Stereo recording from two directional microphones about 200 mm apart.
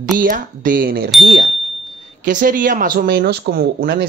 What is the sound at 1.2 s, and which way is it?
Speech, 70° right (ahead or behind).